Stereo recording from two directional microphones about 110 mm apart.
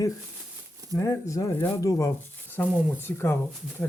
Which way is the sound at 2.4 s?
15° left (ahead or behind).